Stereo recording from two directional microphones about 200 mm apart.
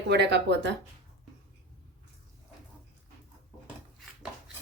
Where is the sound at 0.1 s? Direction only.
60° right (ahead or behind).